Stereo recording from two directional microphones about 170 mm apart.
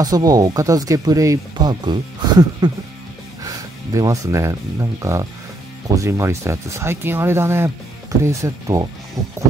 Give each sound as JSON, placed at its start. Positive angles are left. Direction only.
{"t": 0.0, "sound": "speech", "side_deg": -20}